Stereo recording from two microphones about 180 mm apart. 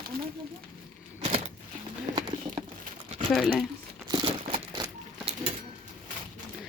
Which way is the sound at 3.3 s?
Centre (ahead or behind).